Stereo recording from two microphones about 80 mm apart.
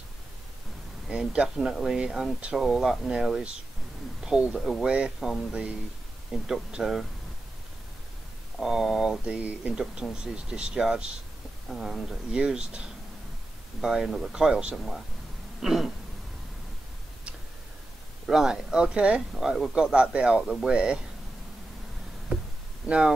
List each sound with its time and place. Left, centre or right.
1.0 s speech: centre
8.5 s speech: centre
9.2 s speech: centre
18.2 s speech: centre
19.3 s speech: centre
22.8 s speech: centre